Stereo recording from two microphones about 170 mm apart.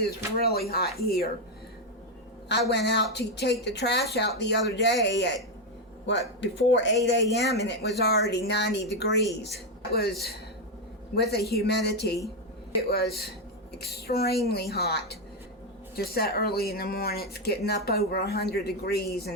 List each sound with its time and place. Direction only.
0.4 s speech: 65° left (ahead or behind)
2.5 s a woman's voice: 85° left
7.5 s speech: 75° left (ahead or behind)
9.9 s speech: 70° left (ahead or behind)